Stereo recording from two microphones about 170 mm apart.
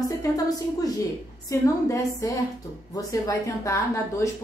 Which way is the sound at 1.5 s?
20° left (ahead or behind).